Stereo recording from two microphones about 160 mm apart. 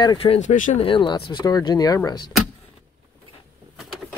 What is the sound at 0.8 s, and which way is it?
Speech, 30° left (ahead or behind).